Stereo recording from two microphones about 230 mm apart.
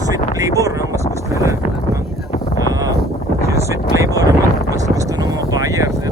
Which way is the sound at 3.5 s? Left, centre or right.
Centre.